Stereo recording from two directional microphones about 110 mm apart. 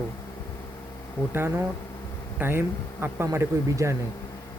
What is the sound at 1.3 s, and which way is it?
Speech, 20° right (ahead or behind).